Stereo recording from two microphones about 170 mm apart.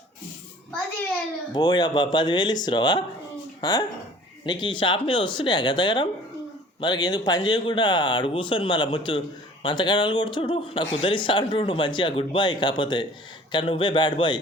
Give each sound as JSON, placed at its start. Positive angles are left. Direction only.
{"t": 1.5, "sound": "a man's voice", "side_deg": 25}